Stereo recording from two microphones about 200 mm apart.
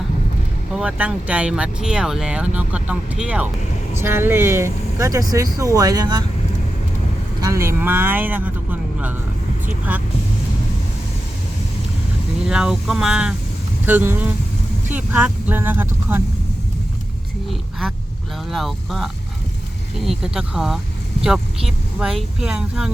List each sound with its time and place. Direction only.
0.7 s speech: 5° right (ahead or behind)
7.4 s speech: 15° right (ahead or behind)
12.5 s speech: 5° right (ahead or behind)
17.5 s a sound: centre (ahead or behind)
18.5 s speech: centre (ahead or behind)